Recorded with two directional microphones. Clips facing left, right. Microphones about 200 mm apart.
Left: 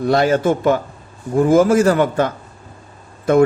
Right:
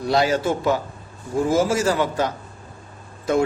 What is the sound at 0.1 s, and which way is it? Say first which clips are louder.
A man's voice: left 4 dB; 55° left (ahead or behind).